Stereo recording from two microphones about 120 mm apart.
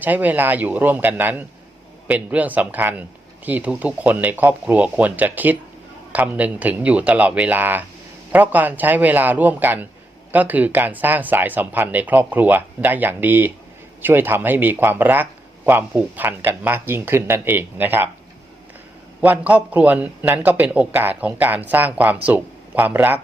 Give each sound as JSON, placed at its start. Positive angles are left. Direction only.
{"t": 0.0, "sound": "speech", "side_deg": -15}
{"t": 19.2, "sound": "speech", "side_deg": -15}